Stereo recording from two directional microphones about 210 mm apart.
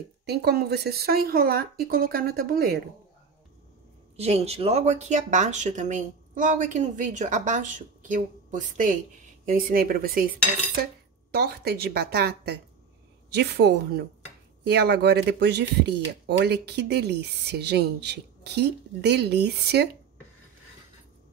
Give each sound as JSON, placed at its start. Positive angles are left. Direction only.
{"t": 0.3, "sound": "speech", "side_deg": -50}
{"t": 4.2, "sound": "speech", "side_deg": -30}
{"t": 11.3, "sound": "speech", "side_deg": -50}